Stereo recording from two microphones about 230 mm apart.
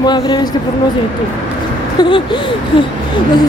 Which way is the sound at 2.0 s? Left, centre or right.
Left.